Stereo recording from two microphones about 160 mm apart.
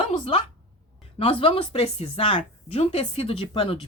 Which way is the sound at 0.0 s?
35° left (ahead or behind).